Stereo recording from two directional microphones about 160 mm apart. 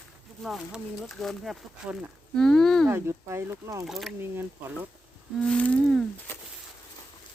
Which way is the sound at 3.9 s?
Centre (ahead or behind).